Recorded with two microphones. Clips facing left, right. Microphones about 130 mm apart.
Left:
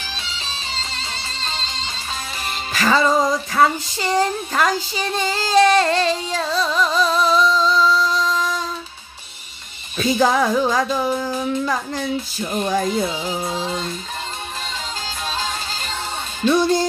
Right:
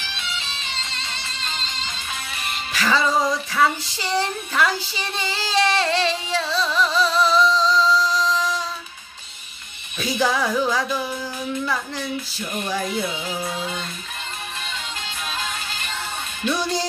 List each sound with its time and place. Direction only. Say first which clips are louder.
0.0 s music: left 1 dB; 35° left (ahead or behind)
2.7 s music: left 3 dB; 50° left (ahead or behind)
9.9 s music: left 5 dB; 50° left (ahead or behind)
15.3 s music: left 3 dB; 30° left (ahead or behind)
16.4 s music: left 7 dB; 50° left (ahead or behind)